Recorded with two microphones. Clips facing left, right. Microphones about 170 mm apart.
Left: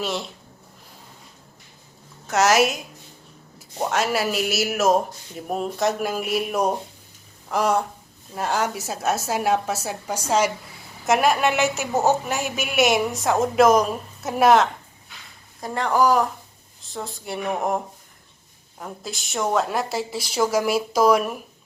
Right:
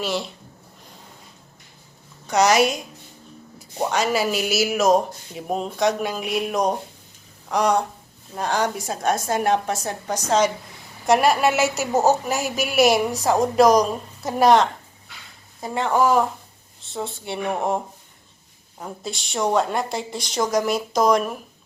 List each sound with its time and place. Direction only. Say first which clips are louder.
0.0 s a woman's voice: right 2 dB; centre (ahead or behind)
2.2 s a woman's voice: right 1 dB; 5° left (ahead or behind)
3.8 s a woman's voice: right 1 dB; centre (ahead or behind)
11.9 s a woman's voice: right 3 dB; 20° right (ahead or behind)
12.5 s a woman's voice: right 3 dB; centre (ahead or behind)
18.8 s a woman's voice: right 2 dB; centre (ahead or behind)